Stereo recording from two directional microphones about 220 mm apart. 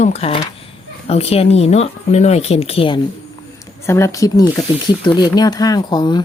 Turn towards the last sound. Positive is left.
turn(degrees=20)  # may be behind; listen again after turning